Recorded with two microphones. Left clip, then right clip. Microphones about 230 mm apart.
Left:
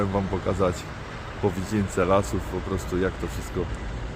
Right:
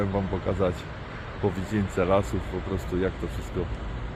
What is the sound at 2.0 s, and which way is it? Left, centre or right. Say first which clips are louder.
Speech: left 2 dB; centre.